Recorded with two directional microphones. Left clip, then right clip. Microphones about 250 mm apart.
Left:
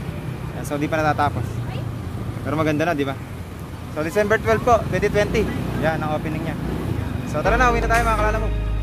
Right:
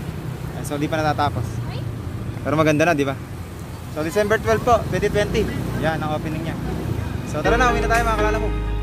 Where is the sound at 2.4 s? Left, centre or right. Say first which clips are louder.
Right 4 dB; right.